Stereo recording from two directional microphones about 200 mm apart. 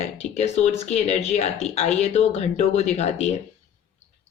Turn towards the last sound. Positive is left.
turn(degrees=35)  # may be behind; listen again after turning